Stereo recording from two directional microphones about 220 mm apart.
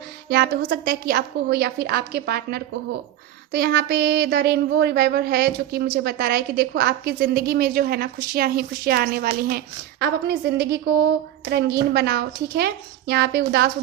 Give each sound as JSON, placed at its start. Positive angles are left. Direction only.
{"t": 0.3, "sound": "speech", "side_deg": -45}